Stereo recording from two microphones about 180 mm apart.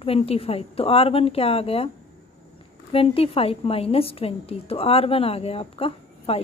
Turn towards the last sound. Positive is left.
turn(degrees=30)  # may be behind; listen again after turning